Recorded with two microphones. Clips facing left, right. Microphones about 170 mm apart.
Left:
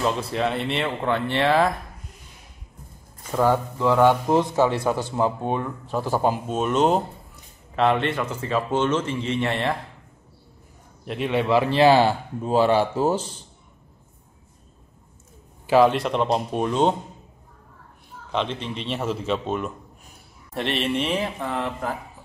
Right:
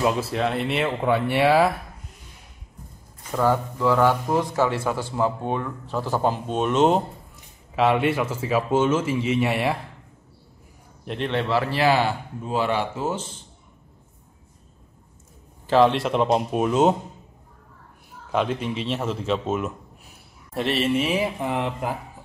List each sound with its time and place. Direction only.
0.0 s speech: 5° right (ahead or behind)
3.3 s speech: 15° left (ahead or behind); by 9.8 s 10° right (ahead or behind)
11.1 s a man's voice: 5° left (ahead or behind); by 13.2 s 35° left (ahead or behind)
15.6 s speech: 5° left (ahead or behind)
18.3 s a man's voice: 10° right (ahead or behind)
21.4 s speech: 15° right (ahead or behind)